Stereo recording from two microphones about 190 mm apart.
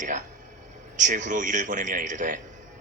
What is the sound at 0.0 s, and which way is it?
A man's voice, 40° right (ahead or behind).